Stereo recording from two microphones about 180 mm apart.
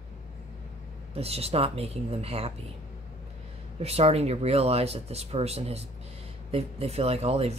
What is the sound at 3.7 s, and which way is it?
Speech, 35° right (ahead or behind).